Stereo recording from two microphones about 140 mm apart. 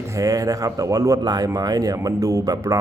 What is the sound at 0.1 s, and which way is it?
A man's voice, 25° right (ahead or behind).